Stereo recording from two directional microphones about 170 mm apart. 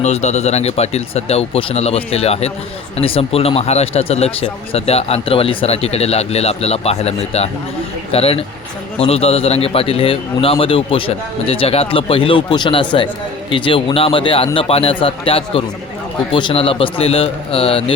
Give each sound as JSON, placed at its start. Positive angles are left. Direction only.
{"t": 0.0, "sound": "speech", "side_deg": 40}